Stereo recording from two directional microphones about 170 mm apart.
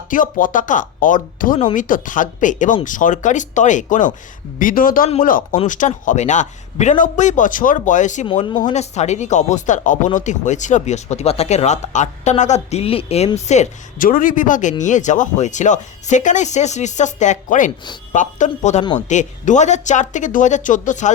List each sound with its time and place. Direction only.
0.1 s speech: 50° left (ahead or behind)
8.3 s speech: 30° left (ahead or behind)
8.7 s speech: 40° left (ahead or behind)